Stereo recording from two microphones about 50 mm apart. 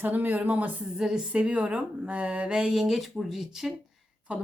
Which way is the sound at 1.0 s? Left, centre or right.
Centre.